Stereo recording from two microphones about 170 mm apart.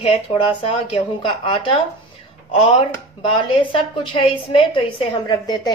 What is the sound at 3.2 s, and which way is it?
A woman's voice, 30° left (ahead or behind).